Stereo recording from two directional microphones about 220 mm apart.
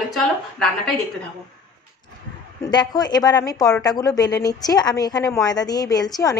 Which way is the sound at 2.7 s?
20° left (ahead or behind).